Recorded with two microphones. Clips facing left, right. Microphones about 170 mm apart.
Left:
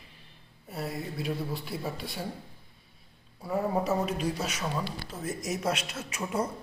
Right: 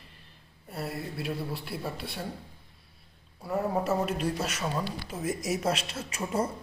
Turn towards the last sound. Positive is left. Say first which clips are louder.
# right 1 dB
turn(degrees=0)  # may be behind; listen again after turning